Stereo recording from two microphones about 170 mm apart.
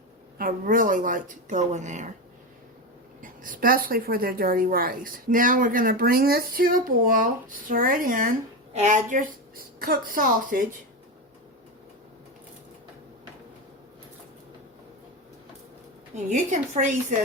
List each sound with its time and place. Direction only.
0.3 s speech: 55° right (ahead or behind)
3.2 s a woman's voice: 50° right (ahead or behind)
16.1 s speech: 45° right (ahead or behind)